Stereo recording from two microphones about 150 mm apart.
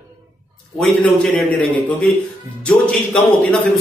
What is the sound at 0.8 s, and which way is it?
Speech, 5° left (ahead or behind).